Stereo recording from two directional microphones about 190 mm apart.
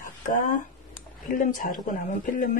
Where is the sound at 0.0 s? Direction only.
45° left (ahead or behind).